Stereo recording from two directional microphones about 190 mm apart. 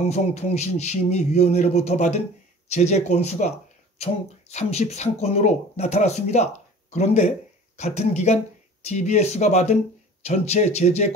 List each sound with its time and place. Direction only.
0.0 s speech: 35° left (ahead or behind)